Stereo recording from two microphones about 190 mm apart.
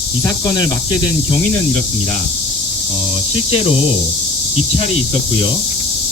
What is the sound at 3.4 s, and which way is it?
Speech, 30° left (ahead or behind).